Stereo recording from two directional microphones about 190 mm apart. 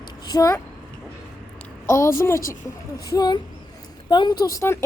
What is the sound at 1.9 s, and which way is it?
A woman's voice, 15° left (ahead or behind).